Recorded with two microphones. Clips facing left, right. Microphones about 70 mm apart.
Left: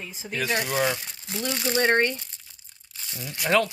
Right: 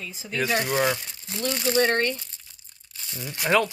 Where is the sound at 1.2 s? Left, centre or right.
Centre.